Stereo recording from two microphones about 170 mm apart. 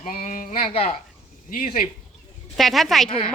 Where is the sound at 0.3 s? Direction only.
50° left (ahead or behind).